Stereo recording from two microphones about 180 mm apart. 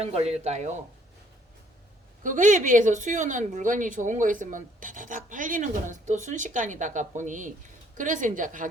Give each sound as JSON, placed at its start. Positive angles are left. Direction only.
{"t": 0.0, "sound": "speech", "side_deg": -35}
{"t": 2.2, "sound": "speech", "side_deg": -45}